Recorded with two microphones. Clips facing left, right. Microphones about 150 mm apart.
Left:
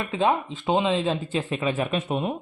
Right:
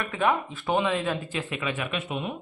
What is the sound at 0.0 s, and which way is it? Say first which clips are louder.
Speech: left 2 dB; 20° left (ahead or behind).